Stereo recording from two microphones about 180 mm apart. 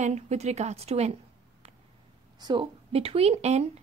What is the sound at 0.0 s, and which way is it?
A woman's voice, 40° right (ahead or behind).